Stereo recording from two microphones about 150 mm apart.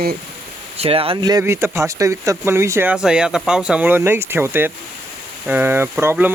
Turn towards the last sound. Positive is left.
turn(degrees=-15)  # may be behind; listen again after turning